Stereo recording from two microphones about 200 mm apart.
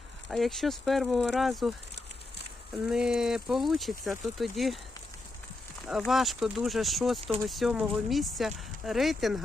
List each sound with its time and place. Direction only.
0.3 s speech: centre (ahead or behind)
2.8 s speech: 5° right (ahead or behind)
6.0 s speech: centre (ahead or behind)